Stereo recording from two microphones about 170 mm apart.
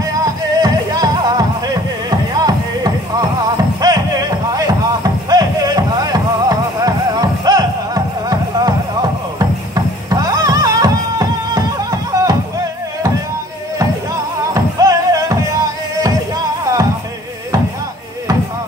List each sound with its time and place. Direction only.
0.1 s music: 20° right (ahead or behind)
3.8 s a sound: 20° right (ahead or behind)
5.3 s music: 20° right (ahead or behind)
10.0 s music: 20° right (ahead or behind)
14.5 s music: 20° right (ahead or behind)